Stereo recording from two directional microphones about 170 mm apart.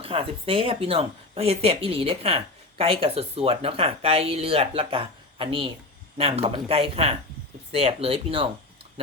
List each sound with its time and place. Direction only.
0.0 s speech: 35° right (ahead or behind)